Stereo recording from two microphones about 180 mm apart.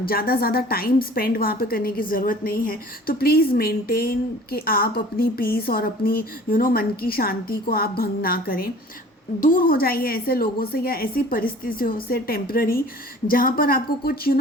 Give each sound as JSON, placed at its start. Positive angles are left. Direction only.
{"t": 0.0, "sound": "a woman's voice", "side_deg": 55}